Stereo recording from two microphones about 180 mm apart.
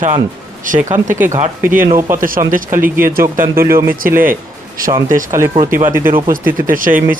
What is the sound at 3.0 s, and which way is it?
Speech, 55° right (ahead or behind).